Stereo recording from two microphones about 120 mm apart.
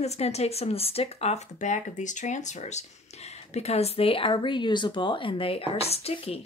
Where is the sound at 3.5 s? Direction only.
60° left (ahead or behind).